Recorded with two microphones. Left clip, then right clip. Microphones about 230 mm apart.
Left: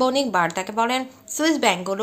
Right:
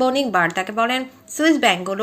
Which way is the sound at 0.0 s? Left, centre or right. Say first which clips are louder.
Right 2 dB; centre.